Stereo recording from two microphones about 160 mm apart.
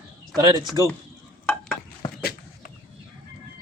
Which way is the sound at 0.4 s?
30° right (ahead or behind).